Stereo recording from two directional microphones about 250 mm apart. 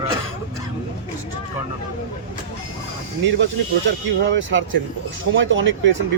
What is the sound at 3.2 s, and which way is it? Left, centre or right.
Speech, right.